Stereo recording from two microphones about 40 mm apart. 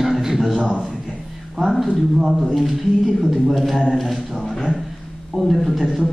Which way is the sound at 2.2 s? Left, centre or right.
Centre.